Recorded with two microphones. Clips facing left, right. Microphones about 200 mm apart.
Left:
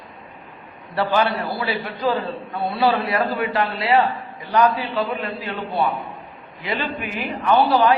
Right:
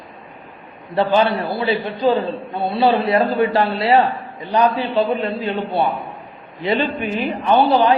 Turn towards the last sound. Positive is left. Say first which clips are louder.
# right 2 dB
turn(degrees=-20)  # may be behind; listen again after turning